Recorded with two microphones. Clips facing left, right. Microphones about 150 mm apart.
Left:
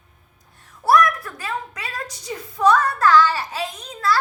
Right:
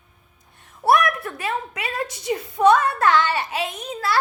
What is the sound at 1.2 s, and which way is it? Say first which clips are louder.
A woman's voice: right 3 dB; 25° right (ahead or behind).